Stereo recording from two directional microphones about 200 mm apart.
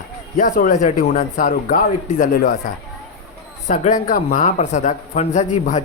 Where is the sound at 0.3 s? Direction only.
45° left (ahead or behind).